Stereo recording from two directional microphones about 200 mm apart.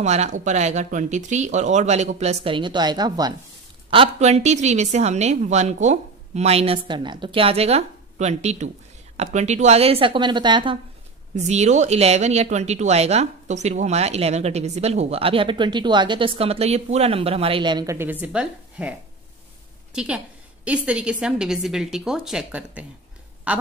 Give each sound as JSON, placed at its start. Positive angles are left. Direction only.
{"t": 0.0, "sound": "speech", "side_deg": -35}
{"t": 11.3, "sound": "a woman's voice", "side_deg": -35}